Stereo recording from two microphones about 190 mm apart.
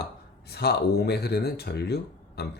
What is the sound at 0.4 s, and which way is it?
Speech, 60° left (ahead or behind).